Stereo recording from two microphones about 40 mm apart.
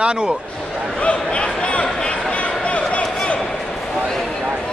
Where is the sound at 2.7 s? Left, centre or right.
Left.